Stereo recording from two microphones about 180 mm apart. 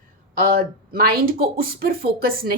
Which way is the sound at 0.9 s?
55° right (ahead or behind).